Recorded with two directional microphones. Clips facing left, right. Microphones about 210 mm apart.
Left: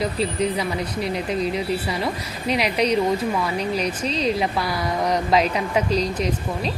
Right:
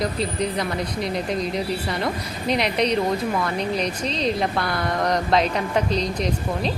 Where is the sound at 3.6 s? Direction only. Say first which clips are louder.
Even; 35° right (ahead or behind).